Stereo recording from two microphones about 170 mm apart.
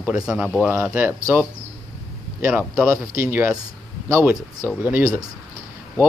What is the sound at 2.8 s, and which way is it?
Speech, 15° right (ahead or behind).